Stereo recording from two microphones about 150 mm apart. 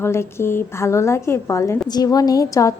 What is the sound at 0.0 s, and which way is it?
A woman's voice, 15° left (ahead or behind).